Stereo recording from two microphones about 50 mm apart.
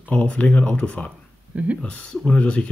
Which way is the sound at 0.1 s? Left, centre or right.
Left.